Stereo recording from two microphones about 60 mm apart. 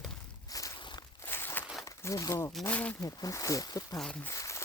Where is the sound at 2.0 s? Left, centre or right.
Left.